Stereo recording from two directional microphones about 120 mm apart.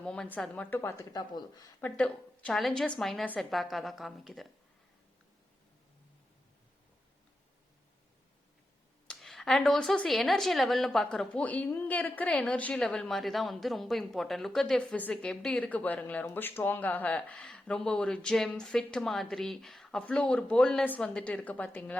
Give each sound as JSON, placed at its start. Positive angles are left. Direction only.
{"t": 0.0, "sound": "speech", "side_deg": 10}
{"t": 0.8, "sound": "speech", "side_deg": 25}
{"t": 1.3, "sound": "speech", "side_deg": 35}
{"t": 1.8, "sound": "a woman's voice", "side_deg": 10}
{"t": 9.0, "sound": "a woman's voice", "side_deg": 0}